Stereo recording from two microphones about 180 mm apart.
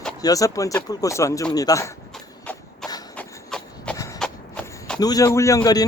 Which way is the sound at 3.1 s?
5° left (ahead or behind).